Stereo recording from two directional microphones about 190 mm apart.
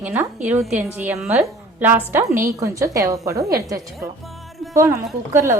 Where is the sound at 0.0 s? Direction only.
10° right (ahead or behind).